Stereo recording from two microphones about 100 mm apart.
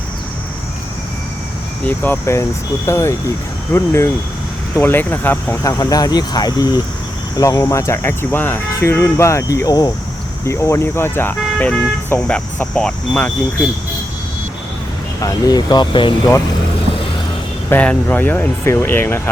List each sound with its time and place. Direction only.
1.8 s speech: 20° left (ahead or behind)
5.6 s speech: 40° left (ahead or behind)
10.4 s speech: 30° left (ahead or behind)
12.3 s speech: 10° left (ahead or behind)
15.2 s speech: 40° left (ahead or behind)
17.7 s speech: 15° left (ahead or behind)